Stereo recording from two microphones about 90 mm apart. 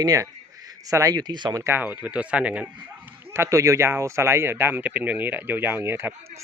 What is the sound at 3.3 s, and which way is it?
Speech, 35° right (ahead or behind).